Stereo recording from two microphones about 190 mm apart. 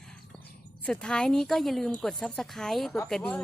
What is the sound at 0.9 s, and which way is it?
A woman's voice, 5° left (ahead or behind).